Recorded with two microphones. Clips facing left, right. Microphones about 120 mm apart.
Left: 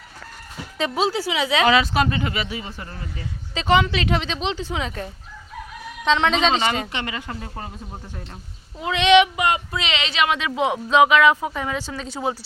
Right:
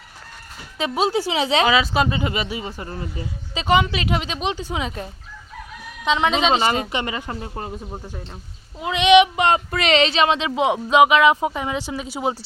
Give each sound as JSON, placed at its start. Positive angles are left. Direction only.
{"t": 0.8, "sound": "speech", "side_deg": -15}
{"t": 3.5, "sound": "a woman's voice", "side_deg": -15}
{"t": 6.1, "sound": "a woman's voice", "side_deg": -10}
{"t": 6.6, "sound": "speech", "side_deg": -35}
{"t": 6.9, "sound": "speech", "side_deg": -20}
{"t": 8.8, "sound": "a sound", "side_deg": -15}
{"t": 9.3, "sound": "speech", "side_deg": -30}
{"t": 9.7, "sound": "speech", "side_deg": -45}